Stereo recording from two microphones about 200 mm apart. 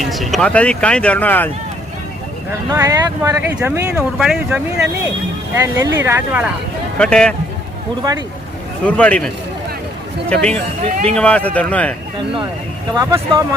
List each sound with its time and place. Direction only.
0.0 s speech: centre (ahead or behind)
2.5 s speech: 15° right (ahead or behind)
5.6 s speech: 15° right (ahead or behind)
7.0 s speech: 5° left (ahead or behind)
8.9 s speech: 5° left (ahead or behind)
12.9 s speech: 15° right (ahead or behind)